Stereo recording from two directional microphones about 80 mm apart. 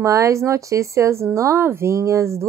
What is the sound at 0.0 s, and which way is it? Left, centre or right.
Speech, right.